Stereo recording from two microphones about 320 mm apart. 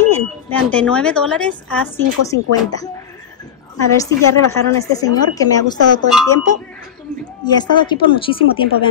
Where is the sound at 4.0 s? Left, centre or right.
Centre.